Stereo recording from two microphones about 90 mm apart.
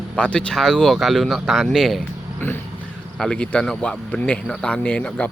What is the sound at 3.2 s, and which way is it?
Speech, 10° left (ahead or behind).